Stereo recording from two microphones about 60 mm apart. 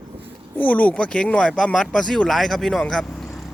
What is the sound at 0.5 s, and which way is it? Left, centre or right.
Speech, left.